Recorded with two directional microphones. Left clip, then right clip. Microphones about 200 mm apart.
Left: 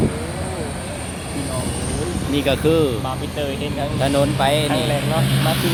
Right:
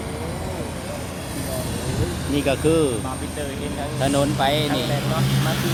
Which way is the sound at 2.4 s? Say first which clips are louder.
Left 2 dB; 10° right (ahead or behind).